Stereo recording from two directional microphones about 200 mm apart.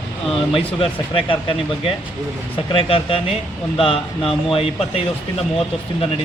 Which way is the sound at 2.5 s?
25° left (ahead or behind).